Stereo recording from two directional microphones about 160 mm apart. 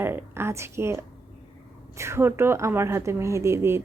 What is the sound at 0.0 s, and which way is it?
A woman's voice, 15° right (ahead or behind).